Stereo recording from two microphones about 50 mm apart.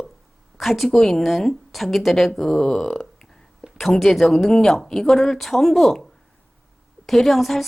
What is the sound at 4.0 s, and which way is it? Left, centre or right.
Speech, centre.